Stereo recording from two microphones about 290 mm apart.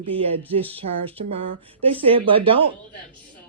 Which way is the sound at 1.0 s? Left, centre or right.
Centre.